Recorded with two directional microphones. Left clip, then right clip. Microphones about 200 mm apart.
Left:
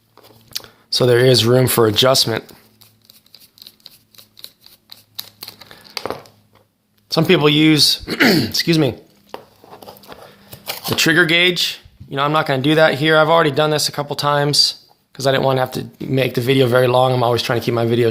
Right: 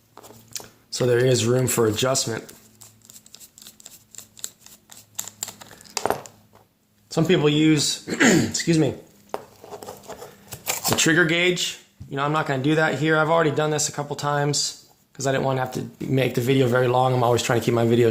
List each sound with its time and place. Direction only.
0.5 s speech: 35° left (ahead or behind)
4.1 s a sound: 5° left (ahead or behind)
7.1 s speech: 40° left (ahead or behind)
9.6 s a sound: 5° right (ahead or behind)
10.7 s shuffling cards: 5° right (ahead or behind)
10.9 s speech: 25° left (ahead or behind)